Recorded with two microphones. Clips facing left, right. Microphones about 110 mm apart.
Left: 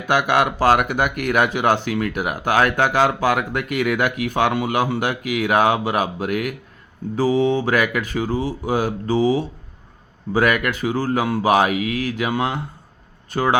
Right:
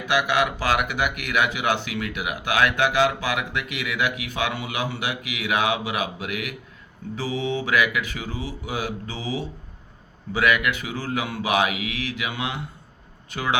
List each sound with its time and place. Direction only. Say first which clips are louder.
0.1 s speech: left 4 dB; 45° left (ahead or behind)